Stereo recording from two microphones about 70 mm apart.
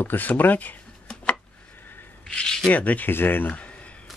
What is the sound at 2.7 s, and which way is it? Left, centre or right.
Speech, left.